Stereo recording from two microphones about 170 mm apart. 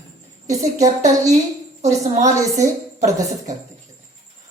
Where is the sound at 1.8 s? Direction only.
45° right (ahead or behind).